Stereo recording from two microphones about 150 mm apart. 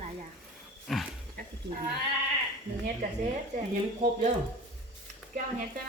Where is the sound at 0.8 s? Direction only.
Centre (ahead or behind).